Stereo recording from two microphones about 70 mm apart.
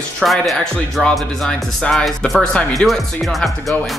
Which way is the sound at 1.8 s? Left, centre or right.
Centre.